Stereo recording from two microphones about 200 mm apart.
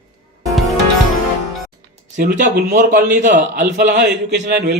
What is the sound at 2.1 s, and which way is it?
A man's voice, 40° right (ahead or behind).